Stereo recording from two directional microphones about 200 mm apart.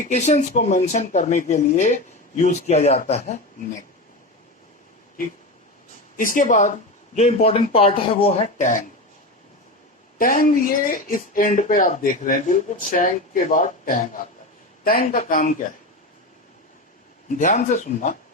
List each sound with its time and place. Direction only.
0.0 s speech: 35° left (ahead or behind)
6.1 s speech: 40° left (ahead or behind)
10.2 s speech: 45° left (ahead or behind)
17.2 s speech: 40° left (ahead or behind)